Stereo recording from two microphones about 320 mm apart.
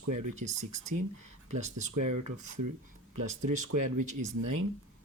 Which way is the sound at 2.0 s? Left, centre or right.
Right.